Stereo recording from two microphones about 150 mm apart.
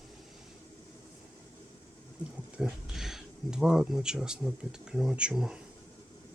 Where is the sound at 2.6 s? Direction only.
5° right (ahead or behind).